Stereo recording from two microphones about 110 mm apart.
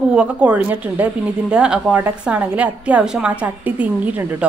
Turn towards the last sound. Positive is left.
turn(degrees=-15)  # may be behind; listen again after turning